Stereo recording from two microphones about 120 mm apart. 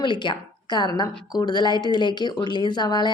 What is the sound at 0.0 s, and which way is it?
A woman's voice, 40° left (ahead or behind).